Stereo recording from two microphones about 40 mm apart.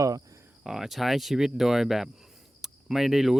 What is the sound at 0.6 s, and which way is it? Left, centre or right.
Speech, centre.